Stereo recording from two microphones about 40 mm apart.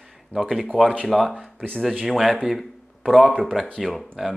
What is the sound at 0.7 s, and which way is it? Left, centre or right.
Speech, right.